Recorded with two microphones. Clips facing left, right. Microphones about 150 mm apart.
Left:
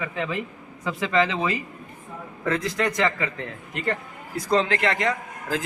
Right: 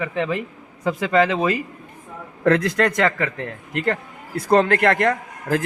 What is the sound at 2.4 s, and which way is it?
A man's voice, 65° right (ahead or behind).